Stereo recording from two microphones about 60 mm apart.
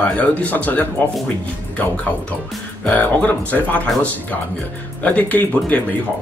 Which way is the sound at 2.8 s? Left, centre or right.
Left.